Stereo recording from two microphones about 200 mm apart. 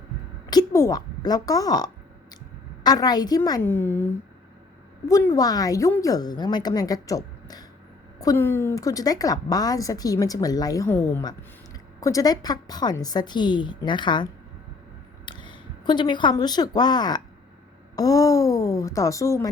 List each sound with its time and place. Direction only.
0.5 s a woman's voice: 15° left (ahead or behind)
15.3 s a woman's voice: 25° left (ahead or behind)